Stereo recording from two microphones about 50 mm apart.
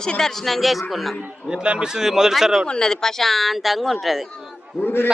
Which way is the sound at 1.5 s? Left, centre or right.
Centre.